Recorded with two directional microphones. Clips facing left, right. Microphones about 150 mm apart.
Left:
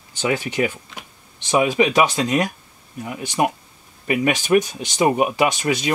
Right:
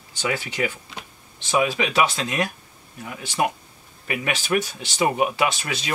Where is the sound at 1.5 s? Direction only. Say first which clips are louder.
Left 5 dB; 15° left (ahead or behind).